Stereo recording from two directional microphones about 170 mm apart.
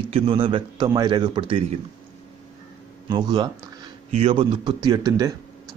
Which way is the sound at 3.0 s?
25° right (ahead or behind).